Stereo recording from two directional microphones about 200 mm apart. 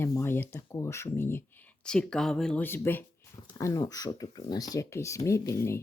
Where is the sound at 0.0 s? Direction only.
15° left (ahead or behind).